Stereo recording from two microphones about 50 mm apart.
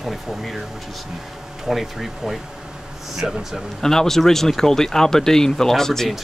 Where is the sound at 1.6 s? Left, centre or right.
Centre.